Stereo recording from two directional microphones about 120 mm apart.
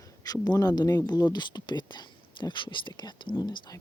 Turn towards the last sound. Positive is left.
turn(degrees=40)  # may be behind; listen again after turning